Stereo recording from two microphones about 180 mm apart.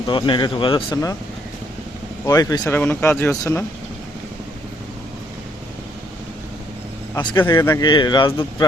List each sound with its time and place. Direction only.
0.1 s a man's voice: 25° left (ahead or behind)
2.2 s speech: 20° left (ahead or behind)
7.2 s a man's voice: 25° left (ahead or behind)